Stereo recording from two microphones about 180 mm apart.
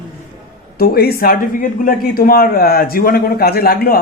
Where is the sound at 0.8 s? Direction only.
55° left (ahead or behind).